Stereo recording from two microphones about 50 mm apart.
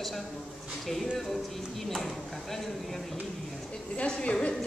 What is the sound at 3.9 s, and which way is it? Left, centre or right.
Speech, left.